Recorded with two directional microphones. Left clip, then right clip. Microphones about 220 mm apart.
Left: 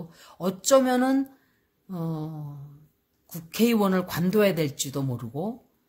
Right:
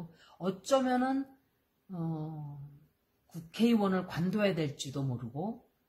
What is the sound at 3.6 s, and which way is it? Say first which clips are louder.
Speech: left 7 dB; 45° left (ahead or behind).